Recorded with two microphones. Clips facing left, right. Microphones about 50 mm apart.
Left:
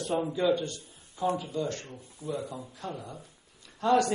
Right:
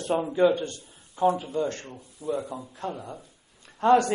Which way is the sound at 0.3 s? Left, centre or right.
Right.